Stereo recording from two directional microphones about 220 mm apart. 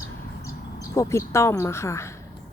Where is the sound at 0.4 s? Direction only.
15° left (ahead or behind).